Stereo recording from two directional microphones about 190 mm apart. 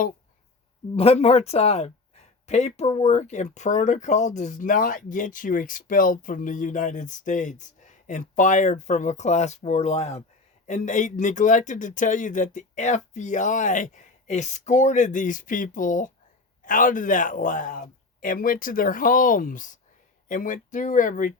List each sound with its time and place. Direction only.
0.9 s speech: 30° left (ahead or behind)